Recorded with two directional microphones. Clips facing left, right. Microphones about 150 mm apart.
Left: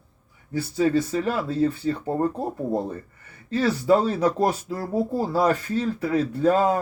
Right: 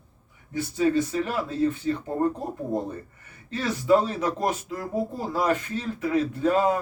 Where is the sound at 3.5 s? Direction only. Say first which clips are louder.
Left 2 dB; 35° left (ahead or behind).